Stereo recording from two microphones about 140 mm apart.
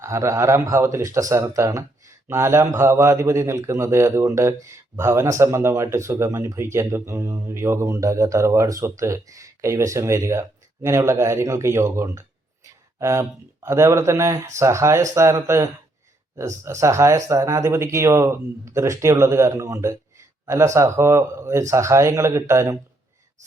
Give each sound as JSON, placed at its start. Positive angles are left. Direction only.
{"t": 0.0, "sound": "speech", "side_deg": -20}